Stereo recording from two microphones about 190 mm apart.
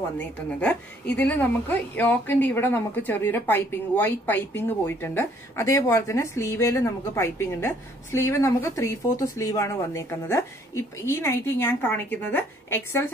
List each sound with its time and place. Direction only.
0.6 s a woman's voice: 5° left (ahead or behind)